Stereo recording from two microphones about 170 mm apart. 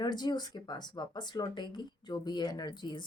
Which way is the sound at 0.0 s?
25° left (ahead or behind).